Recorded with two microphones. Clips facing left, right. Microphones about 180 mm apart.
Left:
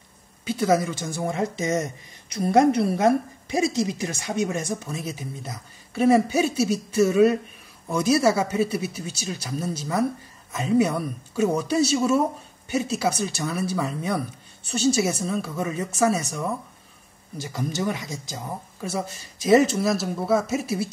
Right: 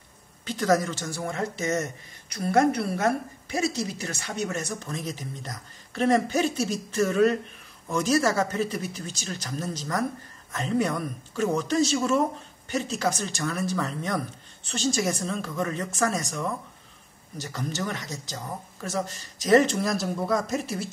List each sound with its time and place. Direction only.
0.5 s speech: 10° left (ahead or behind)